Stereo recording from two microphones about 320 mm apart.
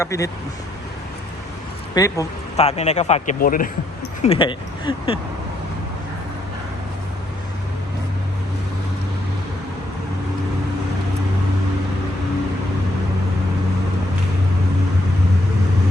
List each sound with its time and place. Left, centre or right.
0.0 s speech: centre
2.0 s speech: centre